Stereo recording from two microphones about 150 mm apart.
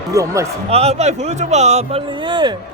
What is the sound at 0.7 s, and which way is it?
Speech, 45° right (ahead or behind).